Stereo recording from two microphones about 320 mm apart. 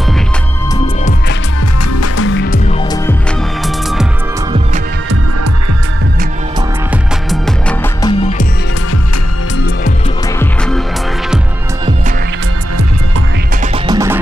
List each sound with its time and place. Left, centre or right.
1.9 s music: left
7.2 s music: centre
8.0 s music: left
10.4 s music: centre
13.8 s music: centre